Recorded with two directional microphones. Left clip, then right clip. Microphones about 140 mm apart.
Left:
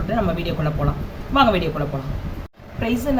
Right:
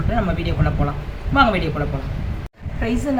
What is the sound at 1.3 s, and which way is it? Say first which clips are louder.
Speech: even; 25° left (ahead or behind).